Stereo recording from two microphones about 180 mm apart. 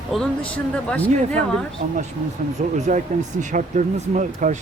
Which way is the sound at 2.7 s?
40° right (ahead or behind).